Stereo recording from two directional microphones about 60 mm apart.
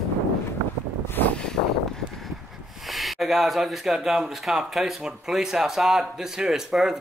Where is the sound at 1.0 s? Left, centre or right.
Left.